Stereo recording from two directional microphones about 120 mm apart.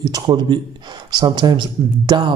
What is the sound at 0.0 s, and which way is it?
A man's voice, 35° right (ahead or behind).